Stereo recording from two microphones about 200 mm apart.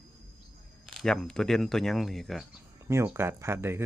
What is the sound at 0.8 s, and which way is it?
A man's voice, centre (ahead or behind).